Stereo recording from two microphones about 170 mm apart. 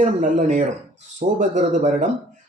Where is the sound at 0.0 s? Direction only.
45° right (ahead or behind).